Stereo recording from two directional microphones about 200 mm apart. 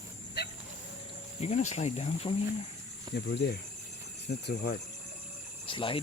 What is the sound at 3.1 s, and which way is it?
Speech, 55° left (ahead or behind).